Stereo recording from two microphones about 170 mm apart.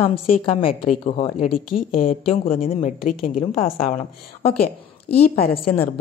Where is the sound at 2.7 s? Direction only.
45° left (ahead or behind).